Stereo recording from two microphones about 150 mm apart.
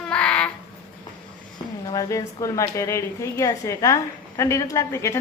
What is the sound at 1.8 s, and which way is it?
A woman's voice, 25° left (ahead or behind).